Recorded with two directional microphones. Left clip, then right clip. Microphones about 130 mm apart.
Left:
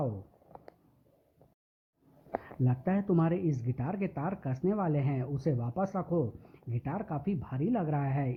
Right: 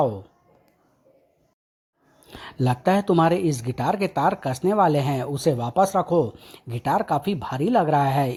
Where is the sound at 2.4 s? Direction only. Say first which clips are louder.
Right 16 dB; 35° right (ahead or behind).